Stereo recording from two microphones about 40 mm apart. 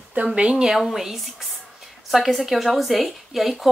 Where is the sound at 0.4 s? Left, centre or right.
Right.